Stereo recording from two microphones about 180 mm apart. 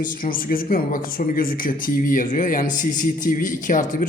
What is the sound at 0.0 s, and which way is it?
Speech, 50° left (ahead or behind).